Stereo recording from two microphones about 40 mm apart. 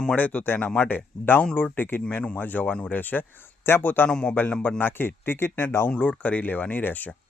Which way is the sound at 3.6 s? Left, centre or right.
Left.